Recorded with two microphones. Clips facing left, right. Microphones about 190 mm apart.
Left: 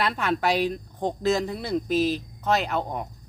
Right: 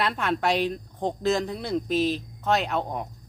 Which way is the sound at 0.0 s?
Centre (ahead or behind).